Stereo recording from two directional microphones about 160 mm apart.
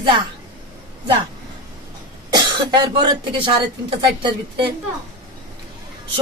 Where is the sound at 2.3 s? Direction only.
25° right (ahead or behind).